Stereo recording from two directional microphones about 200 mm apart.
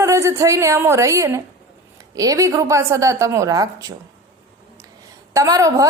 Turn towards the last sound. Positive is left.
turn(degrees=-15)  # may be behind; listen again after turning